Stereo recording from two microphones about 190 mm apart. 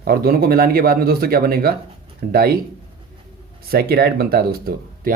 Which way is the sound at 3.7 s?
55° right (ahead or behind).